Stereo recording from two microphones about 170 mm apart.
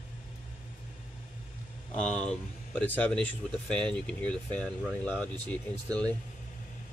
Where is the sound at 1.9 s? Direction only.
5° left (ahead or behind).